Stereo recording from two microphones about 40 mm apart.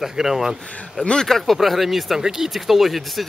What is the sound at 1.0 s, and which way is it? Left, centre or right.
Speech, centre.